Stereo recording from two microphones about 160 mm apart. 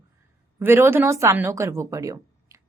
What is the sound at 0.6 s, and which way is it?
Speech, 15° right (ahead or behind).